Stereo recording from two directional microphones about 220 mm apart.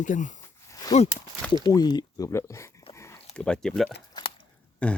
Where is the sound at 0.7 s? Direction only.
15° left (ahead or behind).